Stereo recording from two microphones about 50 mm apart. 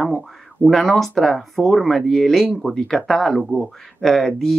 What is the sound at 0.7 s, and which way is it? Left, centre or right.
Speech, centre.